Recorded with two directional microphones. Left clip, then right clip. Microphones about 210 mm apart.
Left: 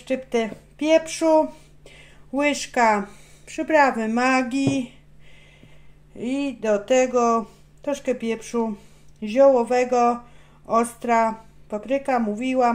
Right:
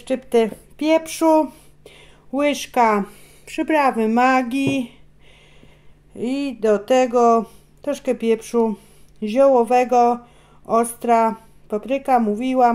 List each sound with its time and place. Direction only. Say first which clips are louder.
0.0 s speech: right 5 dB; 45° right (ahead or behind)
6.1 s speech: right 2 dB; 40° right (ahead or behind)